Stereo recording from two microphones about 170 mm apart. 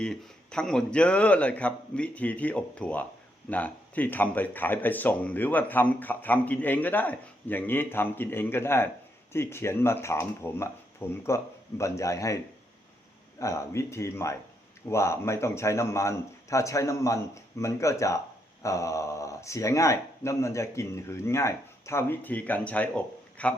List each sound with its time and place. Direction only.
0.0 s a man's voice: 5° left (ahead or behind)
13.4 s speech: 15° left (ahead or behind)